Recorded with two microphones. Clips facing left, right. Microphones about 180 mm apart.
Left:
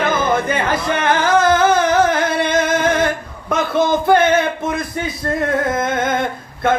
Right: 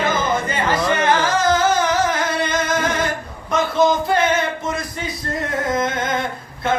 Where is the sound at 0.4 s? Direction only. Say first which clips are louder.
Left 1 dB; 55° left (ahead or behind).